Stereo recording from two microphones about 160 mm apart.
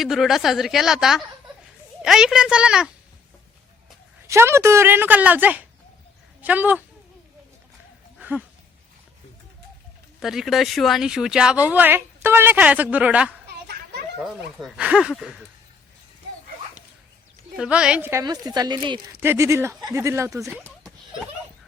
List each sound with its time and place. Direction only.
0.0 s a woman's voice: centre (ahead or behind)
4.3 s speech: 15° right (ahead or behind)
8.2 s a sound: 10° right (ahead or behind)
10.2 s a woman's voice: centre (ahead or behind)
17.6 s speech: 5° right (ahead or behind)
18.1 s speech: 20° right (ahead or behind)
19.2 s speech: 15° right (ahead or behind)